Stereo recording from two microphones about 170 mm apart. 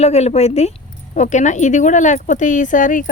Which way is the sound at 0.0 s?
40° left (ahead or behind).